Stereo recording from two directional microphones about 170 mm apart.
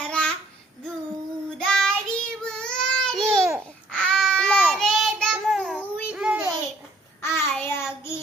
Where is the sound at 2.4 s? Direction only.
5° left (ahead or behind).